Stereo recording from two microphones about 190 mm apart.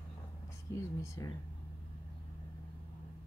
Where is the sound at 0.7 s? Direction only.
15° left (ahead or behind).